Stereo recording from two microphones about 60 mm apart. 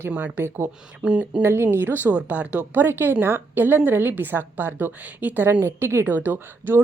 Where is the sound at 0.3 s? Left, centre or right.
Right.